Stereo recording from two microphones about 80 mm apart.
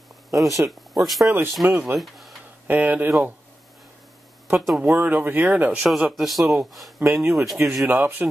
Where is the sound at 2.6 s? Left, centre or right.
Right.